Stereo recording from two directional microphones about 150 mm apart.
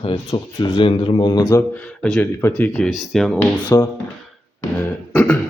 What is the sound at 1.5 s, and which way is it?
Speech, 15° left (ahead or behind).